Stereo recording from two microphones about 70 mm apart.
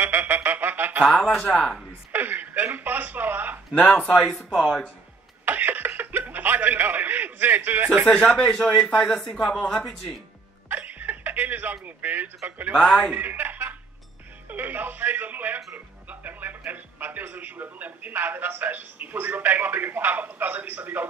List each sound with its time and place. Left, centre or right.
0.0 s music: right
1.1 s speech: centre
2.1 s a sound: right
3.7 s speech: centre
4.5 s speech: centre
5.4 s a sound: right
8.1 s speech: centre
10.7 s a sound: right
12.4 s speech: right
12.7 s speech: centre
13.1 s speech: right